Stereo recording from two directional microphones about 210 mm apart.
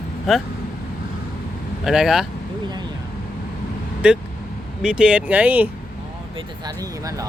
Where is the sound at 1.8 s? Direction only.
Centre (ahead or behind).